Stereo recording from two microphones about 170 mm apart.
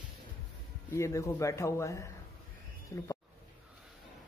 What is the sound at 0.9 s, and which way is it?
A man's voice, 15° left (ahead or behind).